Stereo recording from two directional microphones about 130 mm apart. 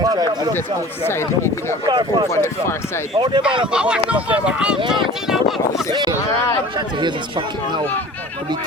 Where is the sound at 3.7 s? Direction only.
5° right (ahead or behind).